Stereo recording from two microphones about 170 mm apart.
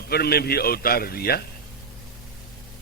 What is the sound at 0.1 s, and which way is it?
A man's voice, 65° left (ahead or behind).